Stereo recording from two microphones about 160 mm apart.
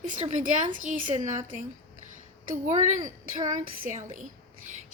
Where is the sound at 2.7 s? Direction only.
50° right (ahead or behind).